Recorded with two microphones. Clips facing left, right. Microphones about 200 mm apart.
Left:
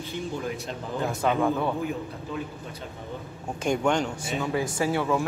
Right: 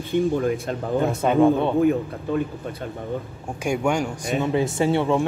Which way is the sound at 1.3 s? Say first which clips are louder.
Right 10 dB; 20° right (ahead or behind).